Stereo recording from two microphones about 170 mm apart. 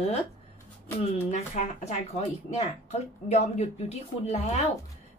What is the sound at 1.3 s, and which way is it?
Speech, 40° left (ahead or behind).